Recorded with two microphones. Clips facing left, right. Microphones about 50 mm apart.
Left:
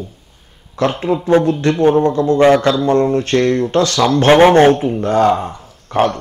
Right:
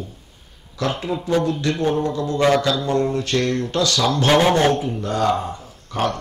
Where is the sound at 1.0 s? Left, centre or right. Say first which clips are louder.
Left 8 dB; left.